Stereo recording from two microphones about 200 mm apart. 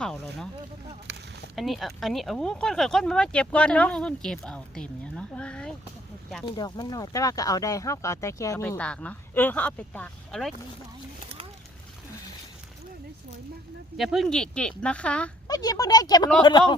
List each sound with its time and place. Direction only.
0.0 s speech: 5° left (ahead or behind)
1.5 s speech: centre (ahead or behind)
6.4 s speech: 20° left (ahead or behind); by 10.5 s 5° left (ahead or behind)
13.9 s speech: centre (ahead or behind)
15.4 s speech: 20° left (ahead or behind)